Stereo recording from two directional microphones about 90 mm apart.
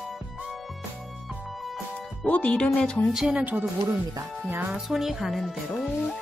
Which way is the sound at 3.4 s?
20° right (ahead or behind).